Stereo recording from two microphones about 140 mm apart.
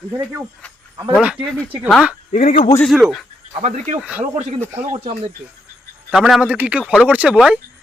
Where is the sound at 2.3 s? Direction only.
50° left (ahead or behind).